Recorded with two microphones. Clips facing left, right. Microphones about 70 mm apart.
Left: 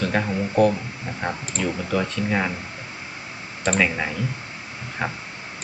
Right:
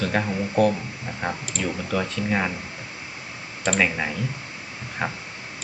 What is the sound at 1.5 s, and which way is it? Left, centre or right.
Speech, left.